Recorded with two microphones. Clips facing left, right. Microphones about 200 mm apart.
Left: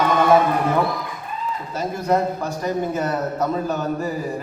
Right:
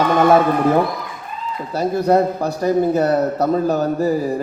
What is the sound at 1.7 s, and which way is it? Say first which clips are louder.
A man's voice: right 6 dB; 35° right (ahead or behind).